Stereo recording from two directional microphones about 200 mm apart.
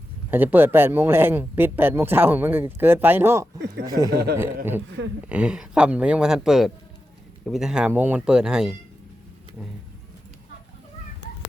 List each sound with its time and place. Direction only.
0.3 s speech: 10° right (ahead or behind)
4.1 s speech: 50° right (ahead or behind)
5.2 s speech: 5° right (ahead or behind)